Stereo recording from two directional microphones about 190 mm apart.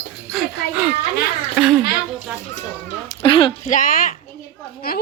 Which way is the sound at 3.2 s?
25° left (ahead or behind).